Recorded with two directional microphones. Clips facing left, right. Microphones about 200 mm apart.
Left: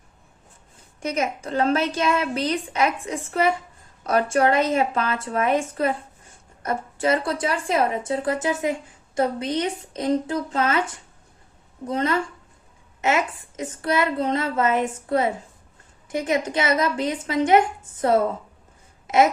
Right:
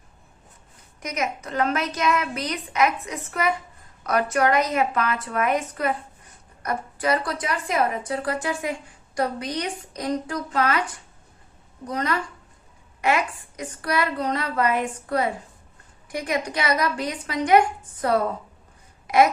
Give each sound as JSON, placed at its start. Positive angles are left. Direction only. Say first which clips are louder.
{"t": 0.9, "sound": "a woman's voice", "louder": "left 3 dB", "side_deg": 30}
{"t": 19.0, "sound": "babbling", "louder": "even", "side_deg": 25}